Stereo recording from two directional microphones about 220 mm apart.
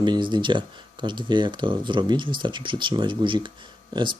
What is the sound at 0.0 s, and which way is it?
Speech, 20° right (ahead or behind).